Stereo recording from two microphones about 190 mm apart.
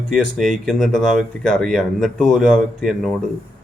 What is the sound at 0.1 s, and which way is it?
Speech, centre (ahead or behind).